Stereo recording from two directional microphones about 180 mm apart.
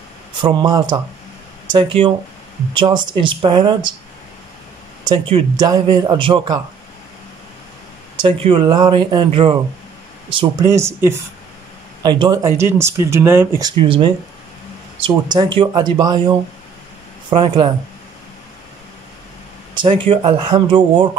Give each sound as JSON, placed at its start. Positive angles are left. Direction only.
{"t": 0.4, "sound": "speech", "side_deg": -25}
{"t": 5.0, "sound": "speech", "side_deg": -25}
{"t": 8.2, "sound": "speech", "side_deg": -30}
{"t": 19.7, "sound": "speech", "side_deg": -25}